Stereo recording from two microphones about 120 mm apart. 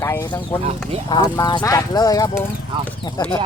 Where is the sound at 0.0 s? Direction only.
25° left (ahead or behind).